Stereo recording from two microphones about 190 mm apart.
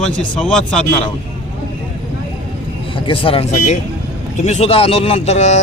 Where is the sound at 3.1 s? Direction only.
30° left (ahead or behind).